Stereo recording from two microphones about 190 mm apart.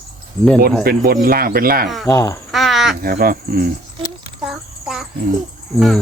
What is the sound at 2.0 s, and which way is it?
Speech, 15° left (ahead or behind).